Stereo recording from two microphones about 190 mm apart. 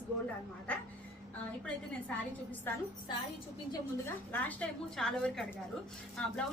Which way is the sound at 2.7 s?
10° left (ahead or behind).